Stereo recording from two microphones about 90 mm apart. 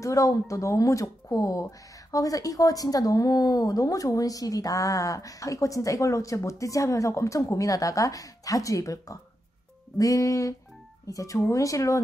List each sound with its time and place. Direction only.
0.0 s speech: 40° left (ahead or behind)